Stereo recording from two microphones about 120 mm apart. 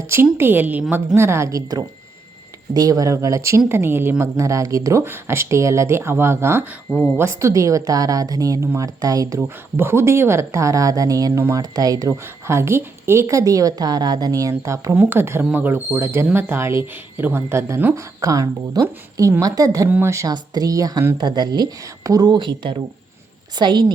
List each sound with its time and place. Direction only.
0.1 s speech: 20° right (ahead or behind)
6.9 s speech: 15° left (ahead or behind)
7.2 s speech: 25° right (ahead or behind)